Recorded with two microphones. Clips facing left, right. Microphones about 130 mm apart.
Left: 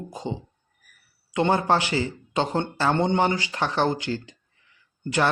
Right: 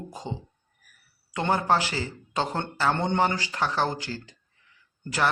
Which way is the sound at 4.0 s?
35° right (ahead or behind).